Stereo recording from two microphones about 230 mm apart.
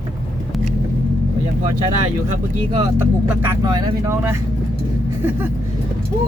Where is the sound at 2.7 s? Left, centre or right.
Centre.